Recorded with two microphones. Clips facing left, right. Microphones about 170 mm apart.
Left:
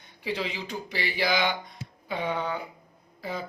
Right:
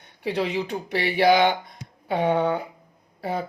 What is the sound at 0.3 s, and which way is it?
Speech, 60° right (ahead or behind).